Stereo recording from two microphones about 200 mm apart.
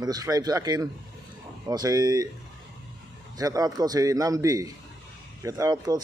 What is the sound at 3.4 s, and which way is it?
Speech, 20° right (ahead or behind).